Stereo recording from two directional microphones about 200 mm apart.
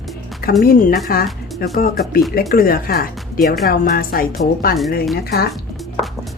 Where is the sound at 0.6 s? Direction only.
45° left (ahead or behind).